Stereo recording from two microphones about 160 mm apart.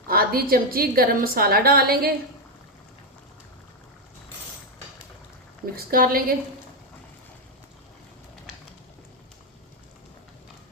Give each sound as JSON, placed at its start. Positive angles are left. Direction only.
{"t": 0.1, "sound": "a woman's voice", "side_deg": -70}
{"t": 5.7, "sound": "a woman's voice", "side_deg": -65}